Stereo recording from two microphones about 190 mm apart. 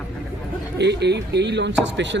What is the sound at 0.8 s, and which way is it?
Speech, 65° right (ahead or behind).